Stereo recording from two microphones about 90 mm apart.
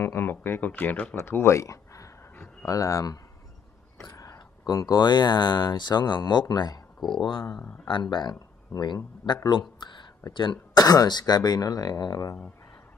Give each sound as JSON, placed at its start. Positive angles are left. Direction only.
{"t": 0.0, "sound": "speech", "side_deg": 25}
{"t": 4.2, "sound": "speech", "side_deg": 40}
{"t": 7.0, "sound": "speech", "side_deg": 0}
{"t": 7.9, "sound": "speech", "side_deg": 55}
{"t": 10.7, "sound": "speech", "side_deg": 45}